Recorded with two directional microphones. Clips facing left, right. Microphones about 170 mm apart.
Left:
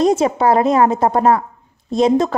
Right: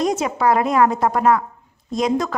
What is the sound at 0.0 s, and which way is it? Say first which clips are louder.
A woman's voice: left 5 dB; 30° left (ahead or behind).